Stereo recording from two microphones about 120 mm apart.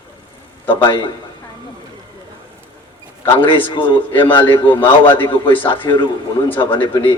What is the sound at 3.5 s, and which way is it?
A man's voice, 40° left (ahead or behind).